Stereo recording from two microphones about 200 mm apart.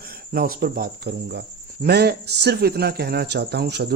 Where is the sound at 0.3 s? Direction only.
50° right (ahead or behind).